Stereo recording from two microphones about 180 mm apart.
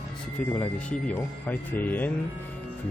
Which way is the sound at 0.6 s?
5° left (ahead or behind).